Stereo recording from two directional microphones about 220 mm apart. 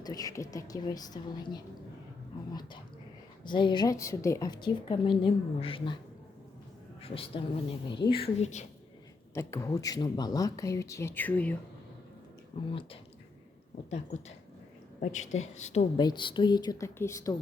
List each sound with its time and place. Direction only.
0.0 s speech: 15° left (ahead or behind)
3.4 s a woman's voice: 20° left (ahead or behind)
7.0 s a woman's voice: 25° left (ahead or behind)
9.3 s speech: 15° left (ahead or behind)
12.5 s a woman's voice: 25° left (ahead or behind)
16.0 s a woman's voice: 20° left (ahead or behind)